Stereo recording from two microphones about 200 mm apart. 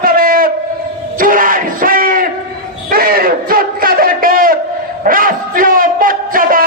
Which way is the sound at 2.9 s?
45° right (ahead or behind).